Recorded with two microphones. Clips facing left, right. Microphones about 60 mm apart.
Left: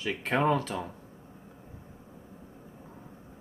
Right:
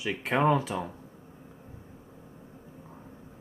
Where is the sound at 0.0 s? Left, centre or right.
Centre.